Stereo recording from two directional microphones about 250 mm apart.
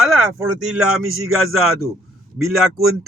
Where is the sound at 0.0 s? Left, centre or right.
Centre.